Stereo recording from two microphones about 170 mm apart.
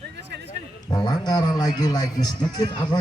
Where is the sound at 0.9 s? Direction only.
25° left (ahead or behind).